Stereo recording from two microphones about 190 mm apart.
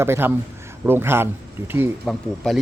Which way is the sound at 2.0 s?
Centre (ahead or behind).